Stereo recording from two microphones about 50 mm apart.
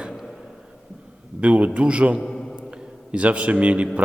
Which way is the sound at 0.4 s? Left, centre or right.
Centre.